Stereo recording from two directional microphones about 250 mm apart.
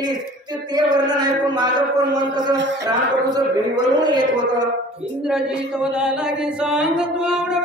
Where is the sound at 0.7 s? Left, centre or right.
Centre.